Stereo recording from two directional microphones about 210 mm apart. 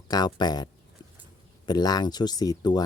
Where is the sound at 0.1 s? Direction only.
20° left (ahead or behind).